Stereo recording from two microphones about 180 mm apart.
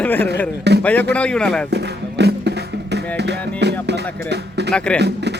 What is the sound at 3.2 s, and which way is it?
Speech, 70° right (ahead or behind).